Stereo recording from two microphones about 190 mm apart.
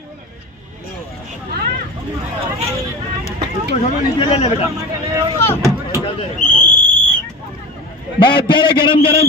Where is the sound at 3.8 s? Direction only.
30° left (ahead or behind).